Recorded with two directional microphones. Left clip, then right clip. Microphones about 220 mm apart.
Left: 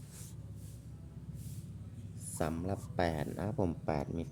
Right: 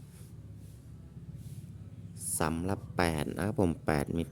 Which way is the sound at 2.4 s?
30° right (ahead or behind).